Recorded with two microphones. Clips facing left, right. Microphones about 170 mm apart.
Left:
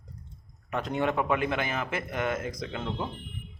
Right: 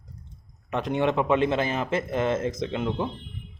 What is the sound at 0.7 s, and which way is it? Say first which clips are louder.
A man's voice: right 4 dB; 20° right (ahead or behind).